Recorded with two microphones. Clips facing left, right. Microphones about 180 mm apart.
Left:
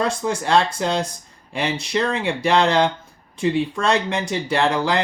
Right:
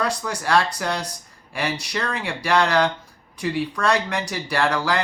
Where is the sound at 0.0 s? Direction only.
25° left (ahead or behind).